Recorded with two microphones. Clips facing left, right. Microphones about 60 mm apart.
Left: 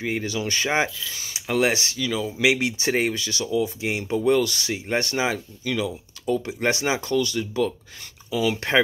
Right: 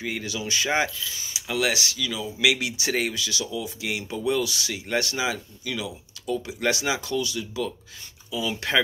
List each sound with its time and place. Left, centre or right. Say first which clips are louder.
0.0 s speech: left 4 dB; left
0.7 s speech: left 1 dB; left
1.1 s speech: left 4 dB; left
8.3 s speech: left 5 dB; left
8.5 s speech: left 2 dB; left